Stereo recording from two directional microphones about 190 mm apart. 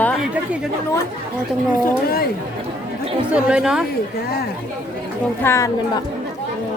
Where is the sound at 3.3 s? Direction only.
5° right (ahead or behind).